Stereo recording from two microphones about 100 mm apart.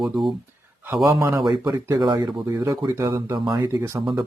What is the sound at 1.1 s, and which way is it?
Speech, 30° right (ahead or behind).